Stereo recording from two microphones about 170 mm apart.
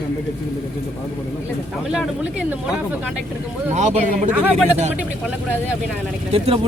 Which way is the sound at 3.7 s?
45° right (ahead or behind).